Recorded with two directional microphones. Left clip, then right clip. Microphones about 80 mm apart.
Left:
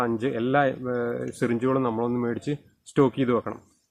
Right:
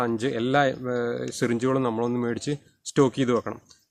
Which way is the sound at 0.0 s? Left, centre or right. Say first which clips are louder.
Even; centre.